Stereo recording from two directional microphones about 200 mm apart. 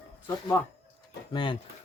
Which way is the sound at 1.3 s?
25° left (ahead or behind).